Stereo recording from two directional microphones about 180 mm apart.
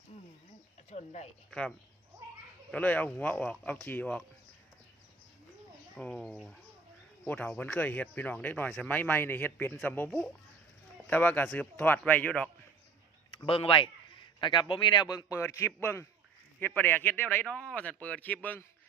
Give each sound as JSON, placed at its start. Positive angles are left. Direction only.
{"t": 0.9, "sound": "a sound", "side_deg": 40}
{"t": 1.5, "sound": "speech", "side_deg": 5}
{"t": 2.7, "sound": "speech", "side_deg": 10}
{"t": 6.0, "sound": "speech", "side_deg": 5}
{"t": 13.3, "sound": "a man's voice", "side_deg": 30}